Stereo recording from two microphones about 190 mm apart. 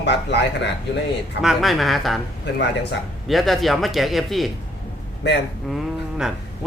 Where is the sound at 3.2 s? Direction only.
Centre (ahead or behind).